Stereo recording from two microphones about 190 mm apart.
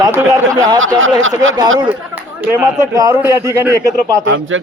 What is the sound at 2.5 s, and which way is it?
A man's voice, 15° right (ahead or behind).